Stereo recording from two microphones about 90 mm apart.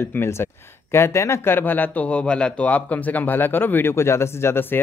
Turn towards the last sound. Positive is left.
turn(degrees=25)  # may be behind; listen again after turning